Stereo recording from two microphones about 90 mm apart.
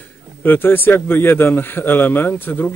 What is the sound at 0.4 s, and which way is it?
Speech, 20° left (ahead or behind).